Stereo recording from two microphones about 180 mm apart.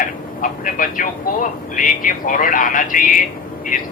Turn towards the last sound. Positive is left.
turn(degrees=50)  # may be behind; listen again after turning